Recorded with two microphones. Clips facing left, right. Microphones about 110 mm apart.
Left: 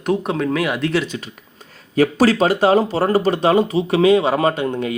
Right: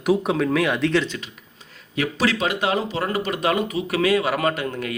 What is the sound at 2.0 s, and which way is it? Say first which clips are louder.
Speech: left 8 dB; 40° left (ahead or behind).